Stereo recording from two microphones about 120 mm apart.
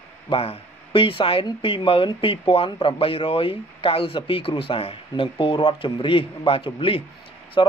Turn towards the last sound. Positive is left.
turn(degrees=40)  # may be behind; listen again after turning